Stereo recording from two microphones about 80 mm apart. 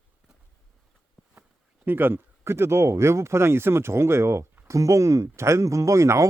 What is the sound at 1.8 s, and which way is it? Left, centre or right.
Speech, right.